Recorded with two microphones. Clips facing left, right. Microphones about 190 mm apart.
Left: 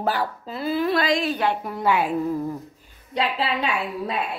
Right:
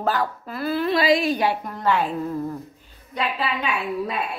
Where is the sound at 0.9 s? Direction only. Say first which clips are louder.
Right 3 dB; 5° right (ahead or behind).